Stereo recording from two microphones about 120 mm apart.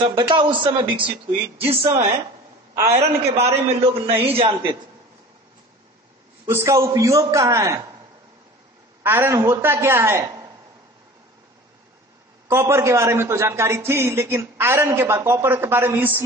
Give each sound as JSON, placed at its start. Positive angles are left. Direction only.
{"t": 0.3, "sound": "a man's voice", "side_deg": -40}
{"t": 1.6, "sound": "a man's voice", "side_deg": -55}
{"t": 6.4, "sound": "a man's voice", "side_deg": -20}
{"t": 9.0, "sound": "a man's voice", "side_deg": -20}
{"t": 12.4, "sound": "a man's voice", "side_deg": -25}